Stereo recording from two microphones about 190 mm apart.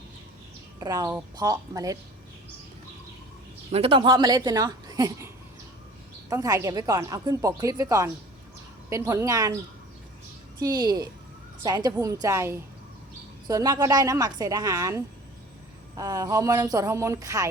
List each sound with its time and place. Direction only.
0.8 s speech: 20° right (ahead or behind)
3.7 s speech: 30° right (ahead or behind)
6.3 s speech: 15° right (ahead or behind)
10.6 s speech: 20° right (ahead or behind)